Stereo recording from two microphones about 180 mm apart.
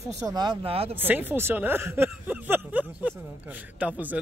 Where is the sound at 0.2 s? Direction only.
20° right (ahead or behind).